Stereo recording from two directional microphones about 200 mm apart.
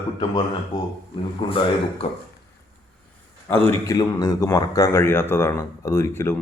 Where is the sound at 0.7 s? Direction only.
40° left (ahead or behind).